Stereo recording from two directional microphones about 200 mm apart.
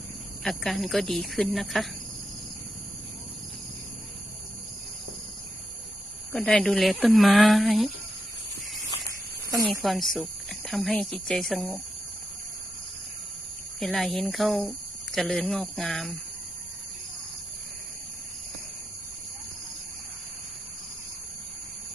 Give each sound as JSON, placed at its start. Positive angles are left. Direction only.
{"t": 0.4, "sound": "speech", "side_deg": 0}
{"t": 6.3, "sound": "speech", "side_deg": 5}
{"t": 9.8, "sound": "speech", "side_deg": 0}
{"t": 13.7, "sound": "speech", "side_deg": 0}